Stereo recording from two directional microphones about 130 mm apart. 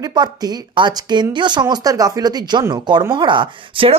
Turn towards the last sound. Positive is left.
turn(degrees=-40)  # may be behind; listen again after turning